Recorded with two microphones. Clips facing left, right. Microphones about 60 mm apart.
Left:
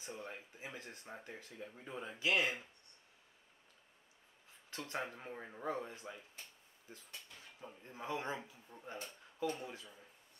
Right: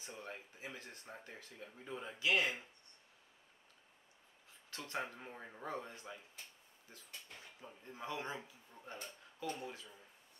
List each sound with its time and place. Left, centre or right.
0.2 s speech: centre
4.6 s speech: left
5.0 s speech: centre
5.9 s speech: left
7.6 s speech: centre
8.1 s speech: left